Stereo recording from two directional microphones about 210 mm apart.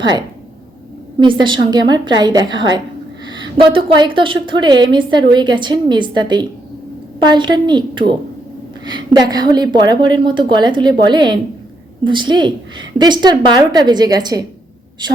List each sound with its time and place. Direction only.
0.0 s a woman's voice: 20° right (ahead or behind)